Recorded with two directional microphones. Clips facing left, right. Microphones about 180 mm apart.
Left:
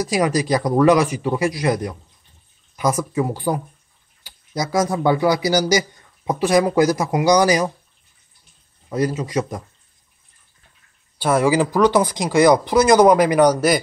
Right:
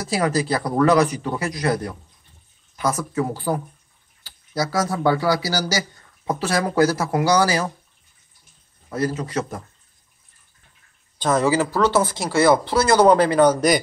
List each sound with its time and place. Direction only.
0.0 s speech: 15° left (ahead or behind)
8.9 s speech: 15° left (ahead or behind)
11.1 s speech: 10° left (ahead or behind)